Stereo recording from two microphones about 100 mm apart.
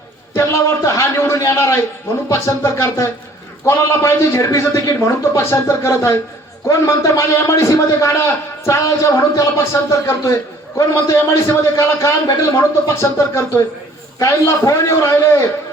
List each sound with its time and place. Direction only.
0.3 s a man's voice: 30° left (ahead or behind)